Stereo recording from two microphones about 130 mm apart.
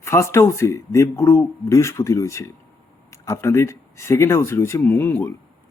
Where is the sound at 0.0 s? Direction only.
20° left (ahead or behind).